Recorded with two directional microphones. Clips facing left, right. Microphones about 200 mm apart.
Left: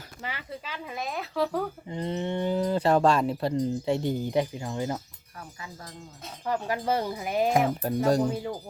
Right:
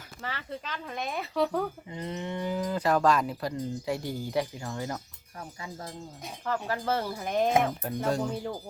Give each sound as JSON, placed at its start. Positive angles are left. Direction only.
{"t": 0.2, "sound": "speech", "side_deg": 15}
{"t": 1.9, "sound": "speech", "side_deg": 30}
{"t": 5.4, "sound": "speech", "side_deg": -30}
{"t": 6.4, "sound": "speech", "side_deg": 15}
{"t": 7.8, "sound": "speech", "side_deg": 35}